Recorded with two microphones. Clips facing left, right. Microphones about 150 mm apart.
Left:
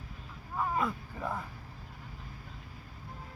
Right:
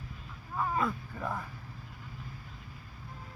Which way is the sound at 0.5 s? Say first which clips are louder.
Even; 10° left (ahead or behind).